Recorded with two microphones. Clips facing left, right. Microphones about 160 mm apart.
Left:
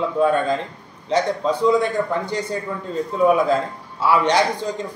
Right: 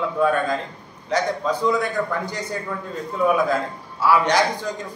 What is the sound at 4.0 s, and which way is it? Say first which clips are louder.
Speech: left 1 dB; 20° left (ahead or behind).